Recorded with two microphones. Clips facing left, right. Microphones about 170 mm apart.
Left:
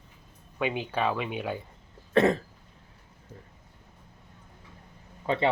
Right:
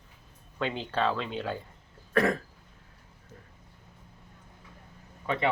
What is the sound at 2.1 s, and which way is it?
Speech, 25° left (ahead or behind).